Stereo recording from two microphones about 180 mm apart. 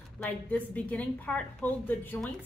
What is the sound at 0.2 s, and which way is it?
A woman's voice, 10° left (ahead or behind).